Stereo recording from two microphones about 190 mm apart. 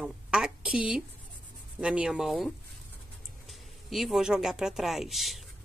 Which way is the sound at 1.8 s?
5° right (ahead or behind).